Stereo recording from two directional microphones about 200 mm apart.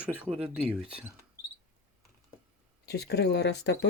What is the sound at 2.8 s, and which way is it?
Speech, 55° left (ahead or behind).